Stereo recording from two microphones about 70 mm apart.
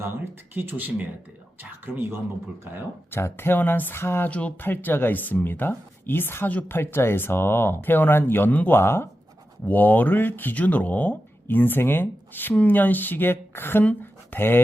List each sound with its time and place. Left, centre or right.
0.5 s speech: right
3.1 s speech: left
4.3 s speech: centre
4.6 s speech: left
9.6 s speech: left
14.0 s a sound: left